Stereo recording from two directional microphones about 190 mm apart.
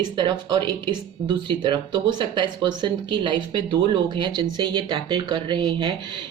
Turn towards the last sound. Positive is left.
turn(degrees=-25)  # may be behind; listen again after turning